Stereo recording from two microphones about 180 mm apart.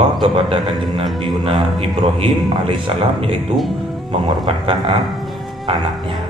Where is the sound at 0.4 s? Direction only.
25° right (ahead or behind).